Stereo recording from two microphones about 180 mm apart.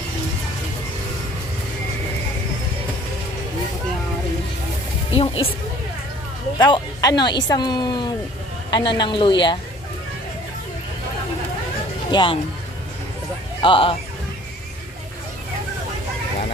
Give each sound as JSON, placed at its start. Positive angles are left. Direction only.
{"t": 5.1, "sound": "music", "side_deg": 30}
{"t": 6.6, "sound": "speech", "side_deg": 20}
{"t": 12.1, "sound": "speech", "side_deg": 25}
{"t": 13.6, "sound": "speech", "side_deg": 30}